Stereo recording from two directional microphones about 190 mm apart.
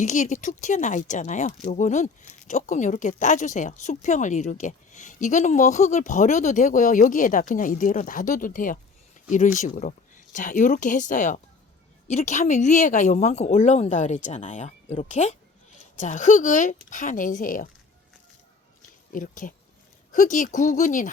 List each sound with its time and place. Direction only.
0.0 s speech: 40° left (ahead or behind)
18.8 s a sound: 45° left (ahead or behind)
20.1 s speech: 40° left (ahead or behind)